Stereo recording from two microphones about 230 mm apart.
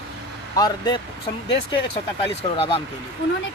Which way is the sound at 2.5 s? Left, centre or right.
Left.